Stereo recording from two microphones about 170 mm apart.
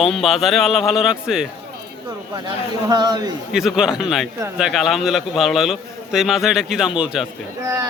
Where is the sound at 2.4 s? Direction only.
25° right (ahead or behind).